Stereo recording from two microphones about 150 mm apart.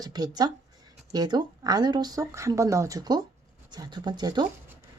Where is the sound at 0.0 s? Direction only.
25° right (ahead or behind).